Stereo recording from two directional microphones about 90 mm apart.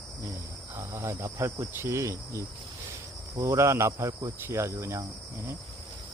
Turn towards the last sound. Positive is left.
turn(degrees=-30)  # may be behind; listen again after turning